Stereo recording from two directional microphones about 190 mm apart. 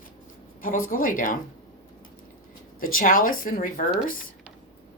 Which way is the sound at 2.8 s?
45° left (ahead or behind).